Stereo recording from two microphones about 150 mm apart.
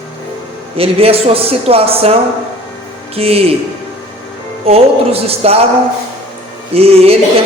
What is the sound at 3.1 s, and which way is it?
Speech, 40° right (ahead or behind).